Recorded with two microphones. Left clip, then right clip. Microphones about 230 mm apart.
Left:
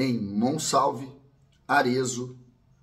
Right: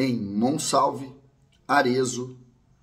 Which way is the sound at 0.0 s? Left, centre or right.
Centre.